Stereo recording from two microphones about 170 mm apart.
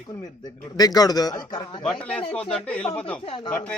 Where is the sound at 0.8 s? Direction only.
20° left (ahead or behind).